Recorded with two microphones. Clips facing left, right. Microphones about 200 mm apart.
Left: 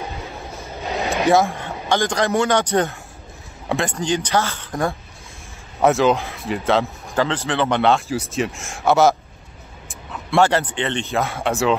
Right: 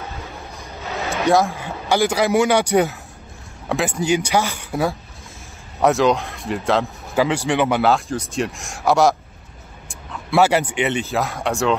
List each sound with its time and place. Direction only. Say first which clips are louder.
0.8 s a sound: left 3 dB; 15° left (ahead or behind)
1.2 s a man's voice: even; centre (ahead or behind)
7.2 s a man's voice: right 2 dB; 10° right (ahead or behind)
7.8 s speech: even; centre (ahead or behind)